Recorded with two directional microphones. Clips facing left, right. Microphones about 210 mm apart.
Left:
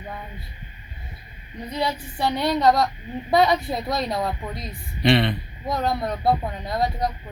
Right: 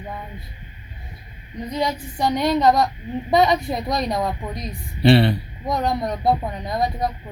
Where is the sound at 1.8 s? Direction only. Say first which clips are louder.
Right 2 dB; 15° right (ahead or behind).